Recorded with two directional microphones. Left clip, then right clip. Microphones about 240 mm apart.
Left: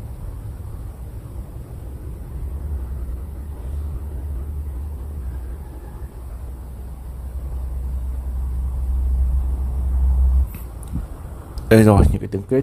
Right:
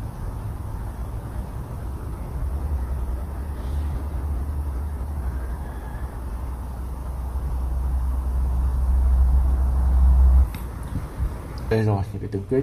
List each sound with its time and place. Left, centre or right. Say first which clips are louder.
11.7 s speech: left 11 dB; left